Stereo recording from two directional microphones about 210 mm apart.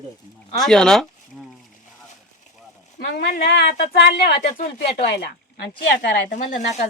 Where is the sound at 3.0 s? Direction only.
40° left (ahead or behind).